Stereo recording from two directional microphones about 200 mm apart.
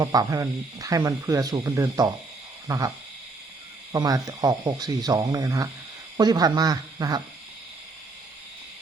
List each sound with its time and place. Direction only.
0.0 s speech: 20° right (ahead or behind)
2.6 s owl: 15° right (ahead or behind)
3.9 s speech: 20° right (ahead or behind)